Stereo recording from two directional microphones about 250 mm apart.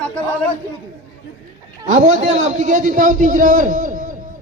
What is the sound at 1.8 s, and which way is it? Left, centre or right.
A man's voice, right.